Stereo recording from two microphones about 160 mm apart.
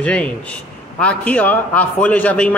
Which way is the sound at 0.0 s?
10° left (ahead or behind).